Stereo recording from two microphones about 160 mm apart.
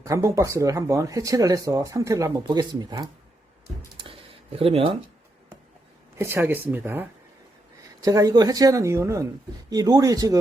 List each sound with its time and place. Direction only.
0.0 s speech: 20° right (ahead or behind)
3.9 s a sound: 35° right (ahead or behind)
6.1 s speech: 15° right (ahead or behind)
8.0 s speech: 20° right (ahead or behind)